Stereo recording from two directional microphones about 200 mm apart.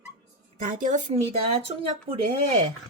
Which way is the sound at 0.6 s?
40° right (ahead or behind).